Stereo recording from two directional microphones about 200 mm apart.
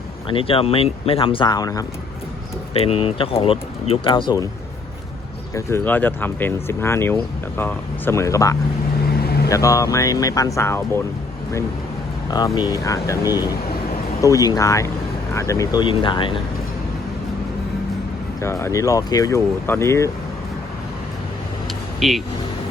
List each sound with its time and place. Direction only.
0.3 s speech: 25° left (ahead or behind)
2.7 s speech: 30° left (ahead or behind)
5.5 s speech: 15° left (ahead or behind)
12.5 s speech: 20° left (ahead or behind)
18.4 s speech: 15° left (ahead or behind)
22.0 s speech: centre (ahead or behind)